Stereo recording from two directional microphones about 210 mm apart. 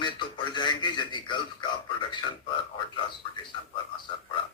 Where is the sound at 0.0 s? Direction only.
20° left (ahead or behind).